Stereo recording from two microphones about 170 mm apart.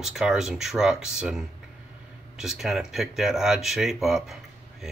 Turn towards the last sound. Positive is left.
turn(degrees=0)  # may be behind; listen again after turning